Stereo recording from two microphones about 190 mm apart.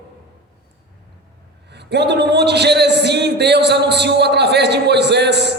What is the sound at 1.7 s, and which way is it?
A man's voice, 60° right (ahead or behind).